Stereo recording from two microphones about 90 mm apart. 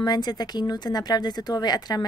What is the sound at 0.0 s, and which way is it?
A woman's voice, 50° left (ahead or behind).